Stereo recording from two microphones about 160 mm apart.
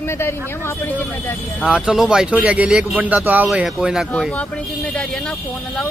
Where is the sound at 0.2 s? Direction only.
15° left (ahead or behind).